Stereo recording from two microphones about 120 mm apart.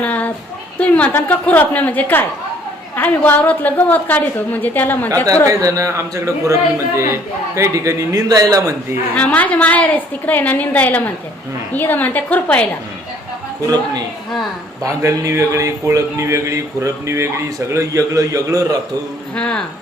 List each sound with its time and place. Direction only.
0.0 s a sound: 10° left (ahead or behind)
0.8 s a woman's voice: 10° left (ahead or behind)
5.5 s a man's voice: 25° right (ahead or behind)
9.1 s a woman's voice: 10° left (ahead or behind)
14.8 s a man's voice: 25° right (ahead or behind)
19.4 s a woman's voice: 10° left (ahead or behind)